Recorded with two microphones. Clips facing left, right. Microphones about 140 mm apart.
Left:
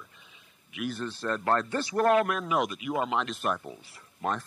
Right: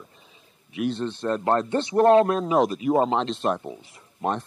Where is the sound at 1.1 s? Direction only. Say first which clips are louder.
Right 6 dB; centre (ahead or behind).